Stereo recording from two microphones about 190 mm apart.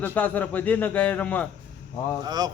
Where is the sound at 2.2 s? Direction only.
20° right (ahead or behind).